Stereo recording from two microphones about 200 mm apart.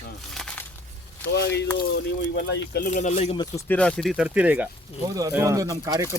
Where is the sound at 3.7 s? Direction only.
5° left (ahead or behind); by 6.1 s 15° right (ahead or behind).